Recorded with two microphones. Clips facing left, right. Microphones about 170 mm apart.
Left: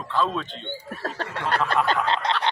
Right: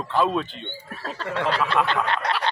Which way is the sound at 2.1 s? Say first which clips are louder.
Left 1 dB; 30° left (ahead or behind).